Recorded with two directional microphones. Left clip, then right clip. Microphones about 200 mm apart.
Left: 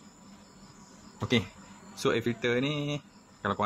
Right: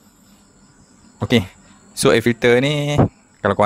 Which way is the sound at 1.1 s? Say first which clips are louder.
Right 11 dB; 55° right (ahead or behind).